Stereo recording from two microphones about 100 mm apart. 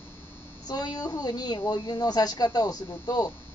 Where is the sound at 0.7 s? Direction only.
40° left (ahead or behind).